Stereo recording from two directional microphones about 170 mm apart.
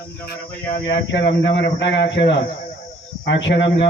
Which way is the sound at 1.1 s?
90° left.